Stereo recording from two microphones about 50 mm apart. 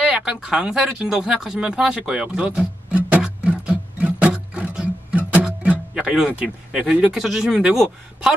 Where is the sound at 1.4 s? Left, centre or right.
Centre.